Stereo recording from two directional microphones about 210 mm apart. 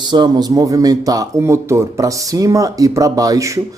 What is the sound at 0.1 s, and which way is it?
Speech, 20° right (ahead or behind).